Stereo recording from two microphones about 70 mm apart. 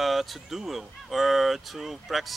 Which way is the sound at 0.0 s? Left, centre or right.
Centre.